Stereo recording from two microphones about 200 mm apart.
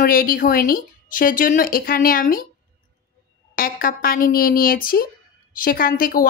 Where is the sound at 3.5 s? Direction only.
45° left (ahead or behind).